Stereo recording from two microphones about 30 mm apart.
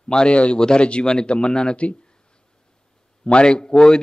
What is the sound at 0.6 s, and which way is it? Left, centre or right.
A man's voice, left.